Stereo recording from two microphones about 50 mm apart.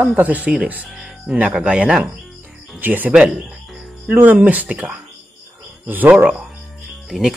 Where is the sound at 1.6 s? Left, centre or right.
Right.